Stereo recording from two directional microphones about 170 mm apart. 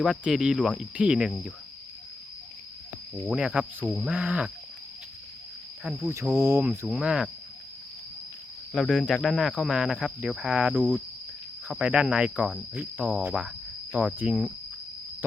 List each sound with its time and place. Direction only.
0.0 s speech: centre (ahead or behind)
3.2 s speech: 5° right (ahead or behind)
5.8 s speech: centre (ahead or behind)
6.3 s speech: 15° right (ahead or behind)
6.7 s speech: 5° right (ahead or behind)
8.7 s speech: centre (ahead or behind)